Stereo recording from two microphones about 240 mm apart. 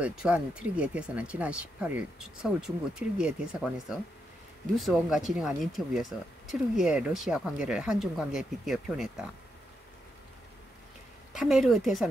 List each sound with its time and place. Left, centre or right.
0.0 s speech: centre
11.3 s speech: centre